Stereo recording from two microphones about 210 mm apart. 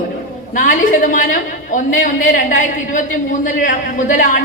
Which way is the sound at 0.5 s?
40° left (ahead or behind).